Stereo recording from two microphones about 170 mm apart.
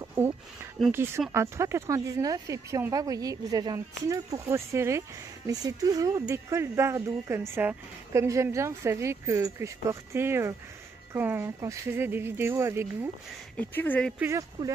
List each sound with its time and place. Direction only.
0.9 s speech: 15° right (ahead or behind)
13.6 s speech: 10° left (ahead or behind)
14.2 s speech: 15° right (ahead or behind)